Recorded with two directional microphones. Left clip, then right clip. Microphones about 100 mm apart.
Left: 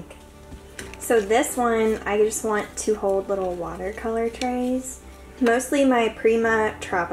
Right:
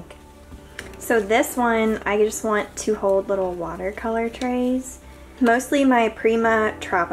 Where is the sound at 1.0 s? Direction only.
25° right (ahead or behind).